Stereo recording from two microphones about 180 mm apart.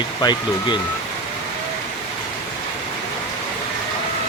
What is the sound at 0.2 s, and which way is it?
Speech, 25° left (ahead or behind).